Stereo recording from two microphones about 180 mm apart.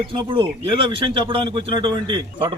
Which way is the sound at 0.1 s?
30° right (ahead or behind).